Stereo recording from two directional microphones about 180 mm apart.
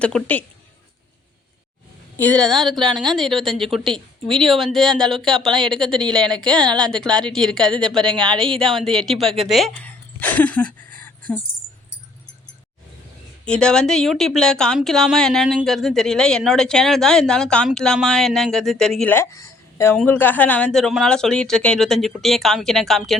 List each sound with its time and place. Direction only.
0.0 s a woman's voice: 5° left (ahead or behind)
2.1 s speech: 5° left (ahead or behind)
8.1 s speech: 25° right (ahead or behind)
8.6 s speech: centre (ahead or behind)
9.4 s a sound: centre (ahead or behind)
13.4 s speech: 5° left (ahead or behind)